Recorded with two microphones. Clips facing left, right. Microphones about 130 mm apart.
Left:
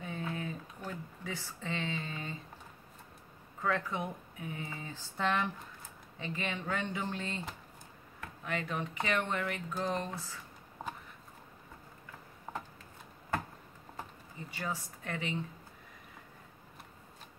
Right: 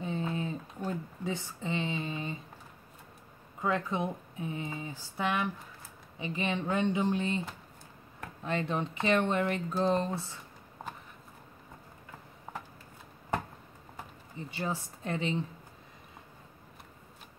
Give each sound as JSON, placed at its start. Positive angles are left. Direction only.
{"t": 0.0, "sound": "a sound", "side_deg": -25}
{"t": 3.6, "sound": "speech", "side_deg": -20}
{"t": 8.5, "sound": "speech", "side_deg": -30}
{"t": 14.5, "sound": "speech", "side_deg": -25}